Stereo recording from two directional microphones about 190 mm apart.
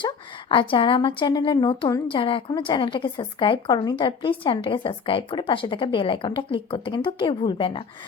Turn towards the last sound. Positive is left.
turn(degrees=25)  # may be behind; listen again after turning